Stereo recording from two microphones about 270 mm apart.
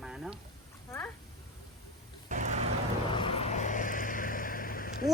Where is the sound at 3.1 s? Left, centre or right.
Centre.